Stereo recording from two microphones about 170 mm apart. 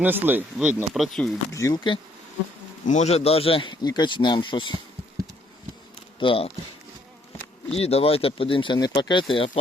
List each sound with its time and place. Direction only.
0.0 s speech: 10° right (ahead or behind)
1.5 s speech: 20° left (ahead or behind)
2.8 s speech: 45° left (ahead or behind); by 4.7 s 30° left (ahead or behind)
6.1 s speech: 30° left (ahead or behind)
7.7 s speech: 35° left (ahead or behind)